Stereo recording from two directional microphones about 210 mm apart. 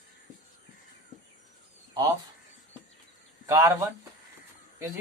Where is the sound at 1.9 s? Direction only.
20° right (ahead or behind).